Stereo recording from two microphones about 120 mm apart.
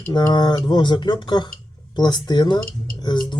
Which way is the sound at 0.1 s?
35° left (ahead or behind).